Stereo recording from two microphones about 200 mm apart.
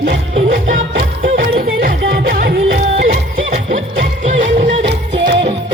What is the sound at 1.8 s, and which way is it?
Music, 50° right (ahead or behind).